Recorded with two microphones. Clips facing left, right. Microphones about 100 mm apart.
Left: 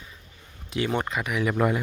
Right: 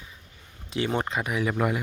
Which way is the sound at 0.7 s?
30° right (ahead or behind).